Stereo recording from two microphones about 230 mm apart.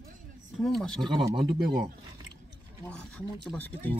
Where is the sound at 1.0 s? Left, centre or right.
Right.